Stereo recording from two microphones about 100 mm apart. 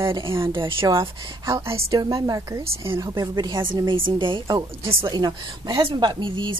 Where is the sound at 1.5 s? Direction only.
30° right (ahead or behind).